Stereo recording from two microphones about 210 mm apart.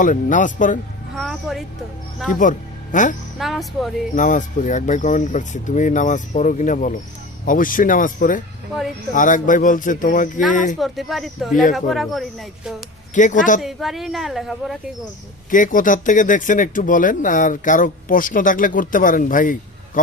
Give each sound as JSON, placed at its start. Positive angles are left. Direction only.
{"t": 0.0, "sound": "speech", "side_deg": 40}
{"t": 1.1, "sound": "a sound", "side_deg": 0}
{"t": 2.3, "sound": "speech", "side_deg": 40}
{"t": 3.3, "sound": "a woman's voice", "side_deg": 0}
{"t": 4.1, "sound": "speech", "side_deg": 40}
{"t": 10.8, "sound": "a woman's voice", "side_deg": 0}
{"t": 13.1, "sound": "speech", "side_deg": 35}
{"t": 13.6, "sound": "a woman's voice", "side_deg": 0}
{"t": 15.4, "sound": "speech", "side_deg": 40}